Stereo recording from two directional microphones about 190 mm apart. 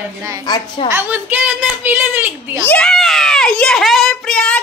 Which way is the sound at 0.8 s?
10° right (ahead or behind).